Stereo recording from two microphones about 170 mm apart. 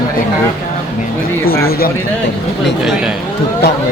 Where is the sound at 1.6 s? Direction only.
60° left (ahead or behind).